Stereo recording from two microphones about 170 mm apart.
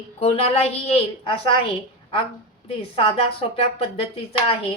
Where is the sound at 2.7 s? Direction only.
35° left (ahead or behind).